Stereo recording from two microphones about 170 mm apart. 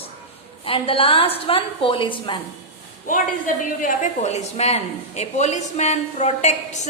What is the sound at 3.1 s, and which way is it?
A woman's voice, 50° left (ahead or behind).